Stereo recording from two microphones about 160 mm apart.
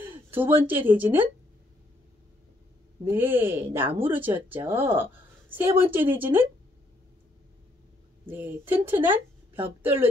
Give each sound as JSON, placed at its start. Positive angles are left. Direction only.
{"t": 0.3, "sound": "speech", "side_deg": -10}
{"t": 3.1, "sound": "speech", "side_deg": -15}
{"t": 5.9, "sound": "speech", "side_deg": -35}
{"t": 8.3, "sound": "a woman's voice", "side_deg": -10}